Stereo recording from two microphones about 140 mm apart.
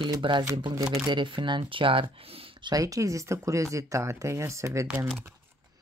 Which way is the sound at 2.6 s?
25° right (ahead or behind).